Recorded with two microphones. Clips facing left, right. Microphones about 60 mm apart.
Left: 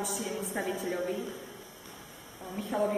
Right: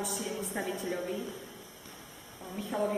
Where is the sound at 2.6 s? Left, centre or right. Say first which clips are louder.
Left 2 dB; centre.